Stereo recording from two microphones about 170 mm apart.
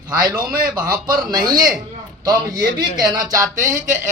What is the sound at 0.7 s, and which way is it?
A man's voice, 25° right (ahead or behind).